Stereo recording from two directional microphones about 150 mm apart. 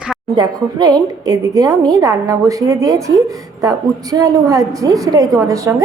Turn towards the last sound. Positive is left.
turn(degrees=-20)  # may be behind; listen again after turning